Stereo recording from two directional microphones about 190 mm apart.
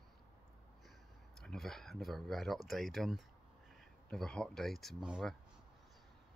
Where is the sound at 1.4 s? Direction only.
Centre (ahead or behind).